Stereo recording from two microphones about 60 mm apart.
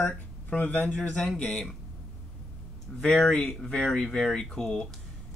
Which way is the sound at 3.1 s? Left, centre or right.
Centre.